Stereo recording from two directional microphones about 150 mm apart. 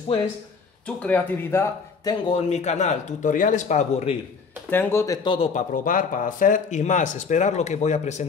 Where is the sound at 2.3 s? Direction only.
50° left (ahead or behind).